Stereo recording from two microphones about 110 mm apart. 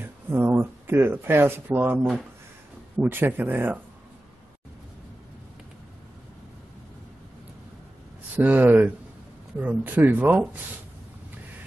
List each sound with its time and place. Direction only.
0.0 s speech: 20° right (ahead or behind)
3.0 s speech: 15° right (ahead or behind)
8.4 s speech: 15° right (ahead or behind)